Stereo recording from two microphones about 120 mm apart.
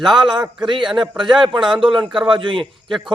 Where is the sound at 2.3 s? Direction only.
45° right (ahead or behind).